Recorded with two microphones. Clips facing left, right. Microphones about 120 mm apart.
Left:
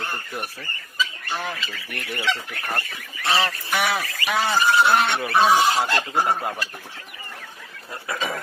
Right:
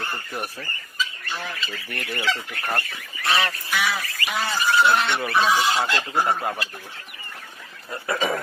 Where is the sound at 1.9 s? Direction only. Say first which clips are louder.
Right 1 dB; 15° left (ahead or behind).